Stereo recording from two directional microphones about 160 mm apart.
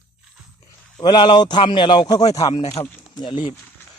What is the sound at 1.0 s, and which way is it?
Speech, 30° left (ahead or behind).